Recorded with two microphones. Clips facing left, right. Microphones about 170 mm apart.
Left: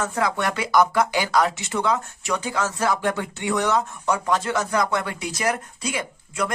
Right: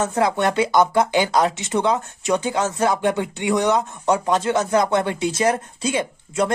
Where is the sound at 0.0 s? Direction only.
25° right (ahead or behind).